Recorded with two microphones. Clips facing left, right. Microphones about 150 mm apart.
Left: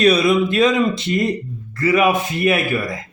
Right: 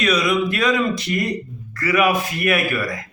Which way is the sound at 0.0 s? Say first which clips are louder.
Left 5 dB; 30° left (ahead or behind).